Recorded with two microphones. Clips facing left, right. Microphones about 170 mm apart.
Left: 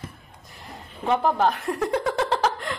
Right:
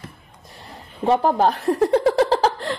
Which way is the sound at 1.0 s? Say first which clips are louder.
Right 4 dB; 35° right (ahead or behind).